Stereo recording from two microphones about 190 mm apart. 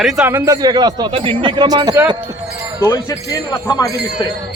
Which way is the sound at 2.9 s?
20° left (ahead or behind).